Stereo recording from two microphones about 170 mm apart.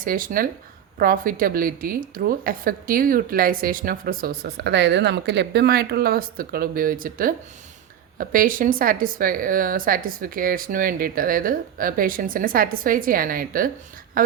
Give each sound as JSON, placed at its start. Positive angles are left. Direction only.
{"t": 0.0, "sound": "a woman's voice", "side_deg": -55}